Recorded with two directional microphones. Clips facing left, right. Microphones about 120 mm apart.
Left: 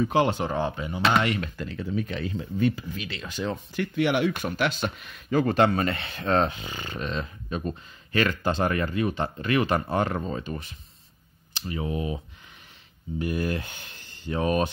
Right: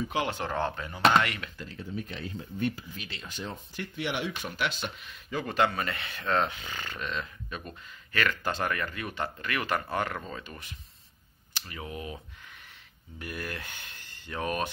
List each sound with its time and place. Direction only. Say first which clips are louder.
0.4 s speech: left 4 dB; 10° left (ahead or behind)
1.6 s speech: left 8 dB; 75° left (ahead or behind); by 6.6 s 35° left (ahead or behind)
6.6 s speech: left 4 dB; 20° left (ahead or behind)
7.0 s speech: left 5 dB; 30° left (ahead or behind)
13.2 s speech: left 10 dB; 25° left (ahead or behind)